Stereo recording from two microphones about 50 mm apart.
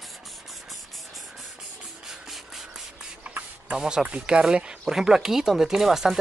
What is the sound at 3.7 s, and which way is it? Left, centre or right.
Speech, centre.